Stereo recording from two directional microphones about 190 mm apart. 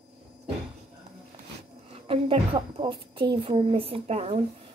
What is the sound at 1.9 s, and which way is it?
A child's voice, 30° right (ahead or behind).